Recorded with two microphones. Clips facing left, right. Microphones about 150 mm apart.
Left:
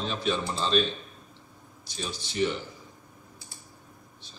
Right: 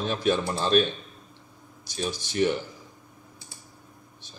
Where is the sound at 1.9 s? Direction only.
55° right (ahead or behind).